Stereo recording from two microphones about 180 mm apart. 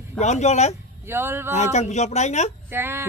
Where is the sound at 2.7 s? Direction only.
10° right (ahead or behind).